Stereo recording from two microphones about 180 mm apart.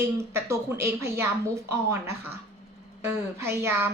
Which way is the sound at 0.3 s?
15° right (ahead or behind).